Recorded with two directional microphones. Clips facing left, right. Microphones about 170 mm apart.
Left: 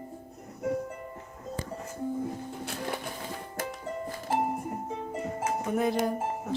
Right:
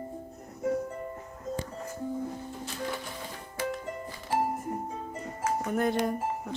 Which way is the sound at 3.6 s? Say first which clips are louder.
Right 4 dB; 45° left (ahead or behind).